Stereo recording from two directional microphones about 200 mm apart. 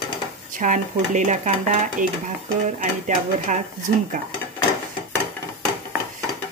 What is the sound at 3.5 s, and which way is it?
Speech, 40° right (ahead or behind).